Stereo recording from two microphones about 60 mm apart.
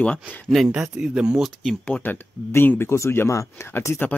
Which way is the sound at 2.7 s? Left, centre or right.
Left.